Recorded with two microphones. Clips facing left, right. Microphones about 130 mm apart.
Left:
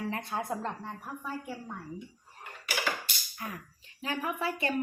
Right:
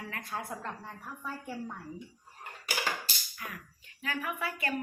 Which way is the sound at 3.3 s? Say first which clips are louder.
Left 6 dB; 30° left (ahead or behind).